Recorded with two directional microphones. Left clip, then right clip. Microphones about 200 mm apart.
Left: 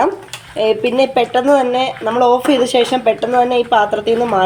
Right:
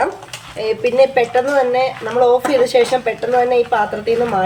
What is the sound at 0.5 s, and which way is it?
Speech, 25° left (ahead or behind).